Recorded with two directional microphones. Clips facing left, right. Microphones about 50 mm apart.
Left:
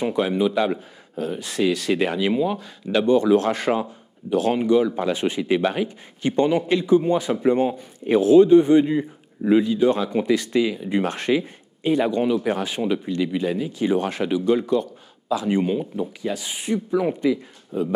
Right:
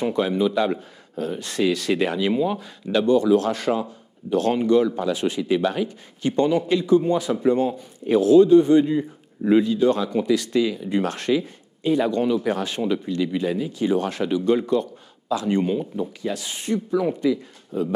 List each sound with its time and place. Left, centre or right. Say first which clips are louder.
0.0 s speech: even; centre
2.4 s speech: even; centre
3.1 s speech: left 1 dB; left
4.3 s speech: even; centre
4.9 s a man's voice: left 1 dB; left
9.4 s a man's voice: even; centre
13.7 s a man's voice: left 1 dB; left
14.4 s speech: even; centre; by 17.8 s left